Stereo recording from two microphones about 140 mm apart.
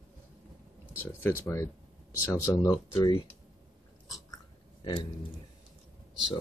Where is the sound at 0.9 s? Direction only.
15° left (ahead or behind).